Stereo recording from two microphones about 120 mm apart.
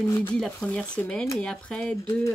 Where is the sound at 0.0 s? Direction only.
20° left (ahead or behind).